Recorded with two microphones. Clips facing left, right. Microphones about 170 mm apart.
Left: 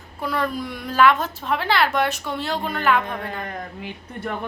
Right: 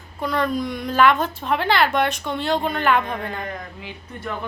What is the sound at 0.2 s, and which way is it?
Speech, 5° left (ahead or behind).